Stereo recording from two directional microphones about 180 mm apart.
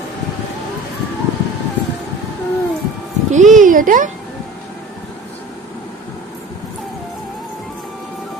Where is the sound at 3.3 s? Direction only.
45° right (ahead or behind).